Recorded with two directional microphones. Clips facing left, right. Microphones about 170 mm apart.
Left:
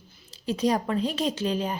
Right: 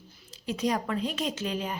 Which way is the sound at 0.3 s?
30° left (ahead or behind).